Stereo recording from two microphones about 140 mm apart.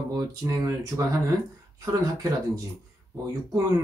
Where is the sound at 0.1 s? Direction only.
25° right (ahead or behind).